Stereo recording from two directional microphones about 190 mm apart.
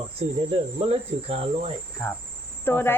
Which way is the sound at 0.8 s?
30° right (ahead or behind).